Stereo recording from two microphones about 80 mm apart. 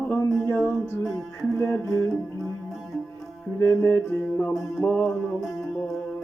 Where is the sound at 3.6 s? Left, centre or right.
Left.